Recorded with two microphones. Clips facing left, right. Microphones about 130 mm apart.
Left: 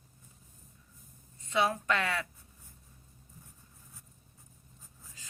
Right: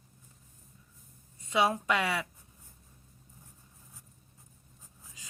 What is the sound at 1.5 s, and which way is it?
Speech, 10° right (ahead or behind).